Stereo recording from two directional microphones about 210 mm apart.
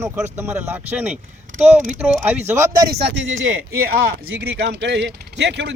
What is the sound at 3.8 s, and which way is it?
Speech, 50° right (ahead or behind).